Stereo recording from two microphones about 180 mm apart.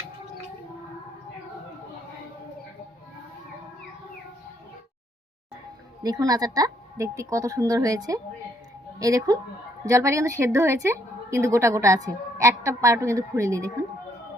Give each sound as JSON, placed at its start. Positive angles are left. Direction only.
{"t": 6.0, "sound": "a woman's voice", "side_deg": -20}